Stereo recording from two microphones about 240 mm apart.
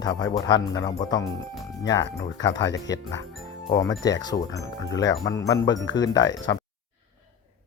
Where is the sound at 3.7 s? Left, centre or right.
Centre.